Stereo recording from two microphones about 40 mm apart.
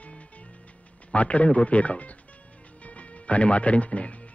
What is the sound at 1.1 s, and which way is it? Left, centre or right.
Speech, left.